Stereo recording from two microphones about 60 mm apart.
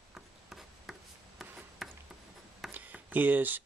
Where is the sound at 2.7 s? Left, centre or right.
Right.